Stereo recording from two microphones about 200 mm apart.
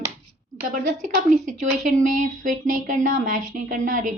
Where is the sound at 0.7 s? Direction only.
40° right (ahead or behind).